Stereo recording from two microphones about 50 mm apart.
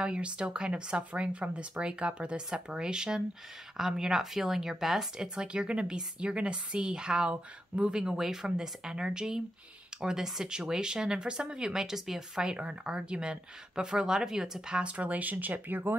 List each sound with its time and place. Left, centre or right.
0.0 s speech: centre; by 15.8 s right